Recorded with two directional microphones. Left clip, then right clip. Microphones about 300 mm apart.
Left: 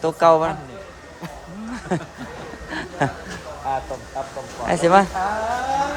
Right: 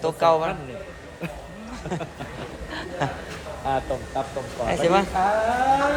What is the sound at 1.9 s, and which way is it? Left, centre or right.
A man's voice, left.